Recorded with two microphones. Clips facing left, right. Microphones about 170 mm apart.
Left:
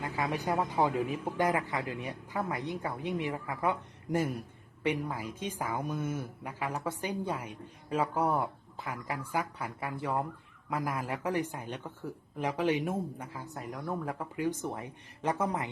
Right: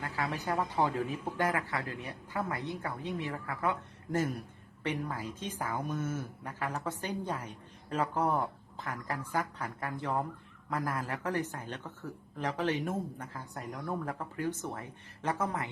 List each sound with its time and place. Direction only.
0.0 s a woman's voice: 15° left (ahead or behind)